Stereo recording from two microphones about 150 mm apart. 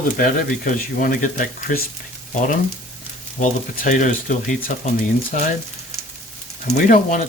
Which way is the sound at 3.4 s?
55° left (ahead or behind).